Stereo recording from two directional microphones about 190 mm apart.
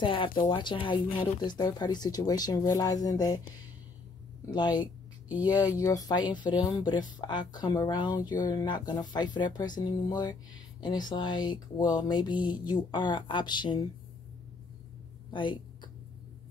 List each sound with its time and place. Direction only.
0.0 s speech: 25° left (ahead or behind)
4.5 s speech: 20° left (ahead or behind)
11.8 s mantra: 5° right (ahead or behind)
12.1 s speech: 25° left (ahead or behind)
15.3 s a sound: 25° left (ahead or behind)